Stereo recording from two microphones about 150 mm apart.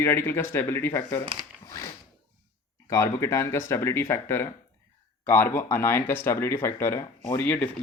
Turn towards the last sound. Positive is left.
turn(degrees=10)  # may be behind; listen again after turning